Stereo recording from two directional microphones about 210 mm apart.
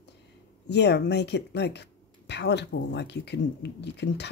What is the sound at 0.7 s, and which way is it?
Speech, 55° left (ahead or behind).